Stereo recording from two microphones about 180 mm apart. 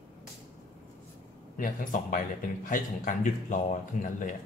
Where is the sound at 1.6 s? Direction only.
50° left (ahead or behind).